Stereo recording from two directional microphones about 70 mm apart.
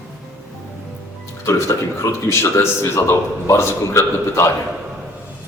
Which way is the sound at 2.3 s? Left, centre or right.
Left.